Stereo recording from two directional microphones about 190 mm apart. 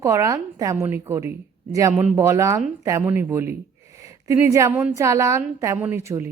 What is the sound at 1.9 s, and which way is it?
Speech, 5° right (ahead or behind).